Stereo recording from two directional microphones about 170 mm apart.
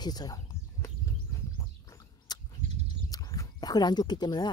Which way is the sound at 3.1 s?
20° left (ahead or behind).